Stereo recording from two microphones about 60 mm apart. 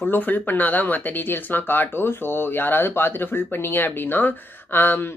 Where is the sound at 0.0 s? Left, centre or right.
Left.